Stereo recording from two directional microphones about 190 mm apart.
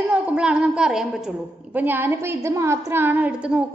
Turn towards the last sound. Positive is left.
turn(degrees=-5)  # may be behind; listen again after turning